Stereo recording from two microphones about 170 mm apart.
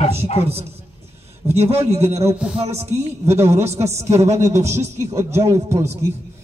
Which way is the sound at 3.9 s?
15° right (ahead or behind).